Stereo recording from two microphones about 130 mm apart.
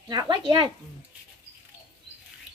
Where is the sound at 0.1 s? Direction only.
35° right (ahead or behind).